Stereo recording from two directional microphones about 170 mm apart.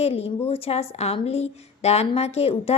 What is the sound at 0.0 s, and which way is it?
A woman's voice, 35° left (ahead or behind).